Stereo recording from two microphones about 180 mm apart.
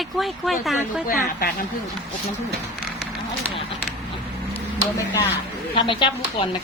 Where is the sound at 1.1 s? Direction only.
55° left (ahead or behind).